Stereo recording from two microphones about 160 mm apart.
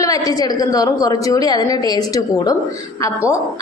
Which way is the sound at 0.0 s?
20° left (ahead or behind).